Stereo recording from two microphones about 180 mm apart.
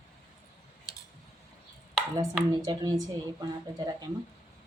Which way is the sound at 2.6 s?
20° right (ahead or behind).